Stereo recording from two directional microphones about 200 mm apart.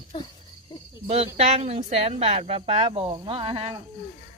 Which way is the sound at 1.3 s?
30° right (ahead or behind).